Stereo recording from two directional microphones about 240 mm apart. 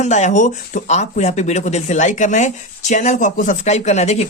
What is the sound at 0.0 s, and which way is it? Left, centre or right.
Speech, left.